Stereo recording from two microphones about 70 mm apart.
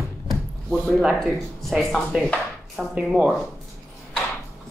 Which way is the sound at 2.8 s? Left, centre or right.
Centre.